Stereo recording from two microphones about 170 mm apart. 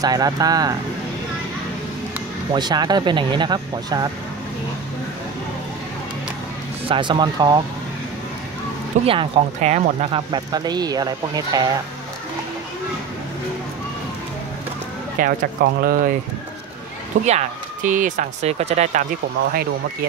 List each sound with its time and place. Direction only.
0.0 s speech: 20° right (ahead or behind)
2.5 s speech: 25° right (ahead or behind)
6.9 s speech: 25° right (ahead or behind)
9.0 s speech: 35° right (ahead or behind)
10.1 s speech: 25° right (ahead or behind)
15.1 s speech: 60° right (ahead or behind)
17.3 s speech: 45° right (ahead or behind)